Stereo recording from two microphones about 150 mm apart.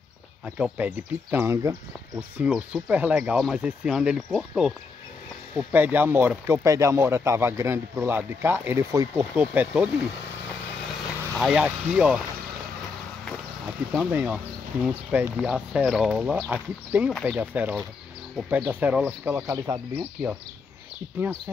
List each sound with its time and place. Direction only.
0.6 s speech: 10° right (ahead or behind)
2.3 s speech: 10° right (ahead or behind)
5.7 s speech: 10° right (ahead or behind)
11.3 s speech: 5° right (ahead or behind)
13.9 s speech: 10° right (ahead or behind)
19.4 s speech: 25° right (ahead or behind)